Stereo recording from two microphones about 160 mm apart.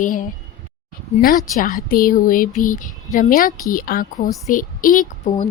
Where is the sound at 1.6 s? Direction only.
55° left (ahead or behind).